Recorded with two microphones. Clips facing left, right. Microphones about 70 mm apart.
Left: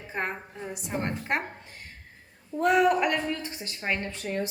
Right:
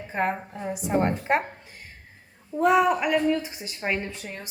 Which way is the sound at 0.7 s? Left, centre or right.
Centre.